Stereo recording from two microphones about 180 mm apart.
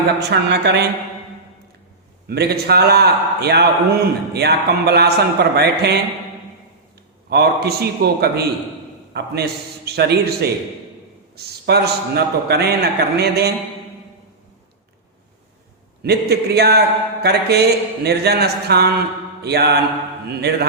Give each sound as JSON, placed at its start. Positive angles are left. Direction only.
{"t": 0.2, "sound": "speech", "side_deg": -65}
{"t": 2.2, "sound": "a man's voice", "side_deg": -65}
{"t": 7.3, "sound": "a man's voice", "side_deg": -65}
{"t": 16.0, "sound": "a man's voice", "side_deg": -65}